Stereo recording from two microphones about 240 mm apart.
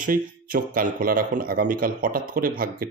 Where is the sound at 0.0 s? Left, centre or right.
Right.